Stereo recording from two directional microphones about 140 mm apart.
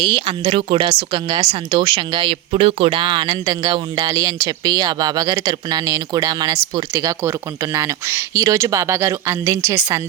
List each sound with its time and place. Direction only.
0.1 s a woman's voice: 40° right (ahead or behind); by 10.0 s 20° right (ahead or behind)